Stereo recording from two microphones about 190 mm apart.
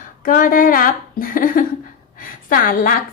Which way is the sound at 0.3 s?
45° left (ahead or behind).